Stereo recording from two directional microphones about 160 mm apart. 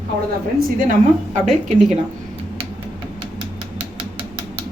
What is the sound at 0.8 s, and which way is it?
Speech, 55° right (ahead or behind).